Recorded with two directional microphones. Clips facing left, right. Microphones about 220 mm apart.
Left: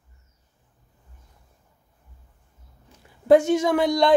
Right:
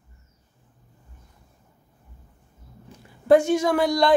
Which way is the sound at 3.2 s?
20° left (ahead or behind).